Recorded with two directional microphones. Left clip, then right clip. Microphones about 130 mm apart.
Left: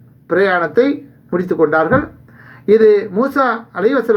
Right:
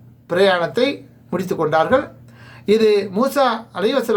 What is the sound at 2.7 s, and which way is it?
Speech, 50° right (ahead or behind).